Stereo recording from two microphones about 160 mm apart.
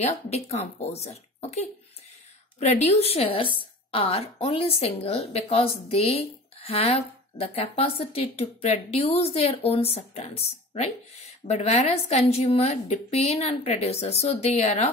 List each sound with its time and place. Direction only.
0.0 s a woman's voice: 40° left (ahead or behind)